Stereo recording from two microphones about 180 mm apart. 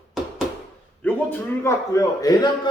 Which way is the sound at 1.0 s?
10° left (ahead or behind).